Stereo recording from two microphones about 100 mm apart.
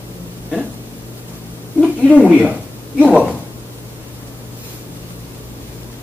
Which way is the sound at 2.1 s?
10° right (ahead or behind).